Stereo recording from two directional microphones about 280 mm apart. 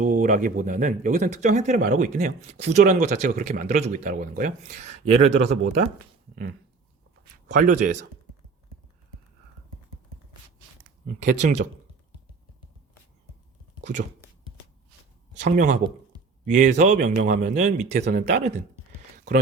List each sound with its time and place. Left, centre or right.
0.0 s speech: right
7.4 s speech: right
11.2 s speech: right
15.3 s speech: right